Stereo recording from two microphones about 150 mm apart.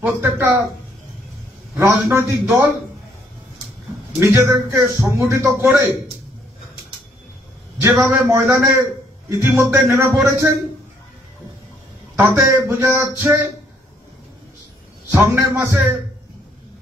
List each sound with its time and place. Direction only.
0.0 s speech: 15° right (ahead or behind)
1.8 s speech: 20° right (ahead or behind)
4.2 s a man's voice: 20° right (ahead or behind)
7.8 s a man's voice: 15° right (ahead or behind)
12.2 s speech: 15° right (ahead or behind)
15.0 s speech: 10° right (ahead or behind)